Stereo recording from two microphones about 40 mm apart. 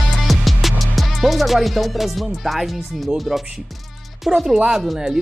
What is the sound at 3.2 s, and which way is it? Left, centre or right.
Speech, centre.